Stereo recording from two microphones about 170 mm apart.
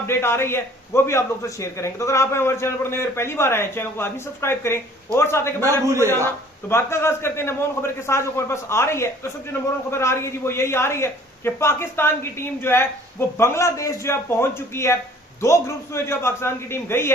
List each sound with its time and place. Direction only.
0.1 s a man's voice: 15° left (ahead or behind)
5.8 s a man's voice: 15° right (ahead or behind)
6.2 s a man's voice: 15° left (ahead or behind)